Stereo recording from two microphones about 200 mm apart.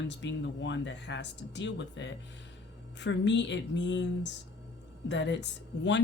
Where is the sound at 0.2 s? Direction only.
65° left (ahead or behind).